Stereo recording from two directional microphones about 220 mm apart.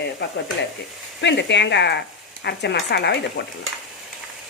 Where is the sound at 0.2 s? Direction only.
50° left (ahead or behind).